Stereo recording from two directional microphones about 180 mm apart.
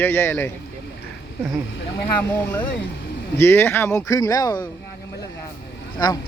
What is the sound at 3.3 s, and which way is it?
Speech, 15° left (ahead or behind).